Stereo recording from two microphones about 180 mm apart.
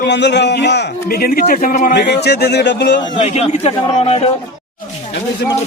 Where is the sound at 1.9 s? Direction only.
65° left (ahead or behind).